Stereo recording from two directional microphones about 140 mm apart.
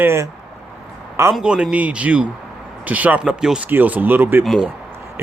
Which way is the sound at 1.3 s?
5° right (ahead or behind).